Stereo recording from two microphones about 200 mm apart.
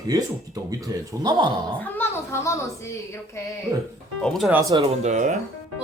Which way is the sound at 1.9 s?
10° left (ahead or behind).